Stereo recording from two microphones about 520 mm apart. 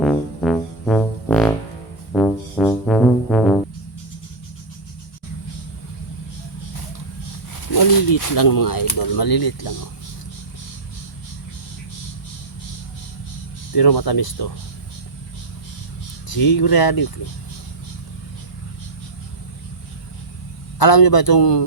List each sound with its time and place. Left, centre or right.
0.0 s music: centre
7.7 s speech: left
13.7 s speech: left
16.3 s speech: left
20.7 s a man's voice: left